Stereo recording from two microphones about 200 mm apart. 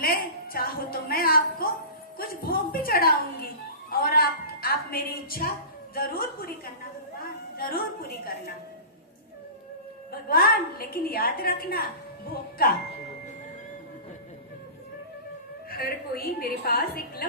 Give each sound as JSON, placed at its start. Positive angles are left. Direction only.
{"t": 0.0, "sound": "a woman's voice", "side_deg": 50}
{"t": 7.5, "sound": "a woman's voice", "side_deg": 50}
{"t": 10.1, "sound": "a woman's voice", "side_deg": 50}
{"t": 15.7, "sound": "a woman's voice", "side_deg": 50}